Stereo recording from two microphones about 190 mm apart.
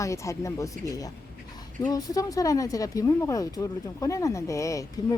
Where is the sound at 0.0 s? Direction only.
15° left (ahead or behind).